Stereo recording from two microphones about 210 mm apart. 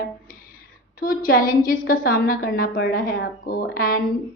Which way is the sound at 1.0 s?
45° left (ahead or behind).